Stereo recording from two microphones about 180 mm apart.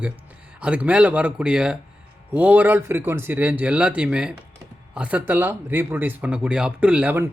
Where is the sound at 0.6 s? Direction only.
5° right (ahead or behind).